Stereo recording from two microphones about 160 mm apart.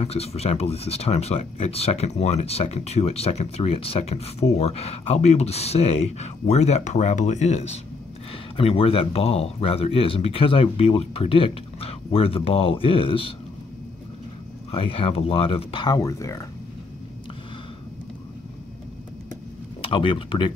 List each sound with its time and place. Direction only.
0.0 s speech: 40° left (ahead or behind)
14.7 s speech: 35° left (ahead or behind); by 16.4 s 20° left (ahead or behind)
19.8 s speech: 30° left (ahead or behind)